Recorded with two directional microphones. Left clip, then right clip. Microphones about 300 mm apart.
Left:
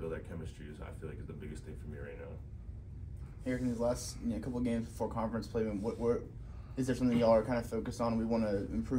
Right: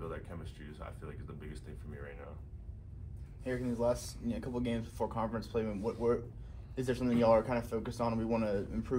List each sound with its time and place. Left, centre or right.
0.4 s speech: centre
3.4 s speech: right